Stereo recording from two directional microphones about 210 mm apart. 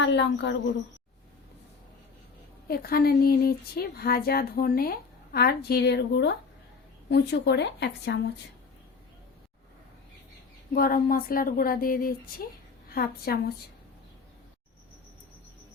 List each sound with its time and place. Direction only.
0.0 s speech: 60° left (ahead or behind)
2.6 s speech: 45° left (ahead or behind)
10.8 s speech: 45° left (ahead or behind)